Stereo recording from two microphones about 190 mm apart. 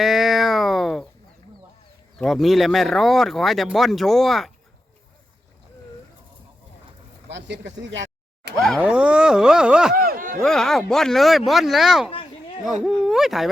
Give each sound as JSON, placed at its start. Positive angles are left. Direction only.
{"t": 0.0, "sound": "a sound", "side_deg": 0}
{"t": 2.1, "sound": "speech", "side_deg": 0}
{"t": 7.3, "sound": "speech", "side_deg": -70}
{"t": 8.5, "sound": "speech", "side_deg": 0}
{"t": 9.9, "sound": "a sound", "side_deg": -50}
{"t": 10.4, "sound": "speech", "side_deg": 0}